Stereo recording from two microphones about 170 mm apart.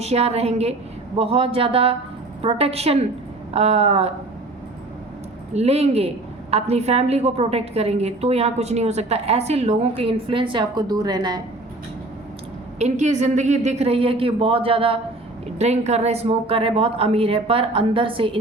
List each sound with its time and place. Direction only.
0.0 s a woman's voice: 40° right (ahead or behind)
5.5 s a woman's voice: 40° right (ahead or behind)
12.8 s a woman's voice: 45° right (ahead or behind)